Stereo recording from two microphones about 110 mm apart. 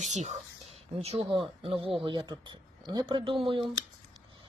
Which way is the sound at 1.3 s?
55° right (ahead or behind).